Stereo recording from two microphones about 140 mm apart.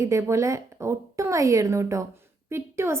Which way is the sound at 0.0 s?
20° right (ahead or behind).